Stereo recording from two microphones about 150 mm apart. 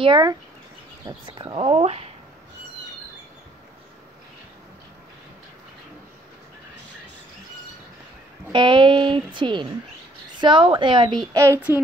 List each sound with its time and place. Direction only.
0.0 s speech: 30° right (ahead or behind)
8.5 s speech: 30° right (ahead or behind)
11.3 s speech: 20° right (ahead or behind)